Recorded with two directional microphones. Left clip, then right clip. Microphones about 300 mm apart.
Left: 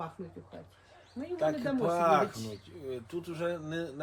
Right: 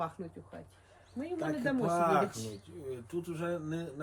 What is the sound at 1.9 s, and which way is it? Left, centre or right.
Speech, left.